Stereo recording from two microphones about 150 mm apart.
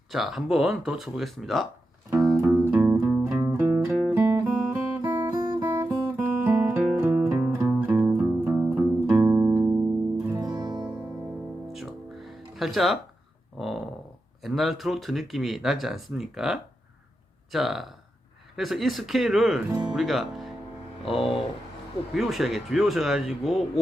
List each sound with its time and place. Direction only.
0.1 s speech: centre (ahead or behind)
2.2 s music: 5° right (ahead or behind)
5.0 s music: 20° right (ahead or behind)
11.7 s music: centre (ahead or behind)
13.6 s dog: centre (ahead or behind)
14.4 s speech: centre (ahead or behind)
21.0 s speech: 40° left (ahead or behind)
22.1 s speech: centre (ahead or behind)